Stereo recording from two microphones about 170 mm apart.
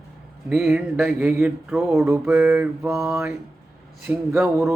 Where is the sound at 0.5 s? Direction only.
5° right (ahead or behind).